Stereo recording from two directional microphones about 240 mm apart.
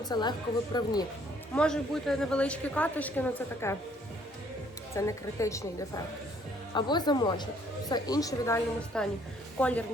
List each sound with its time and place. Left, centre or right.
0.0 s a woman's voice: centre
1.5 s a woman's voice: centre
4.9 s a woman's voice: centre
6.7 s a woman's voice: centre